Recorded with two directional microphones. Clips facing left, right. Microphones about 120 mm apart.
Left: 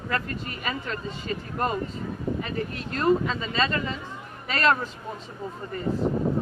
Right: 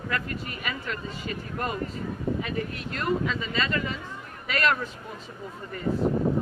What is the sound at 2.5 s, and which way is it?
Speech, 35° left (ahead or behind).